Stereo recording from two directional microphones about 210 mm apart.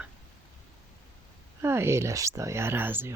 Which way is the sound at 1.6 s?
10° right (ahead or behind).